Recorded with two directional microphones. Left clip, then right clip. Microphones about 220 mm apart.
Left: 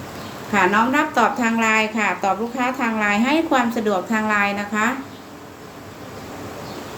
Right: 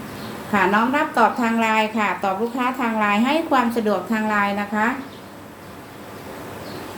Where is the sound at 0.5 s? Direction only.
15° left (ahead or behind).